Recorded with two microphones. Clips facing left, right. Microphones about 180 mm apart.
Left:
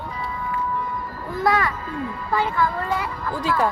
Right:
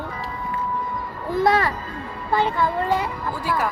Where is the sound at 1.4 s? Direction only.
30° right (ahead or behind).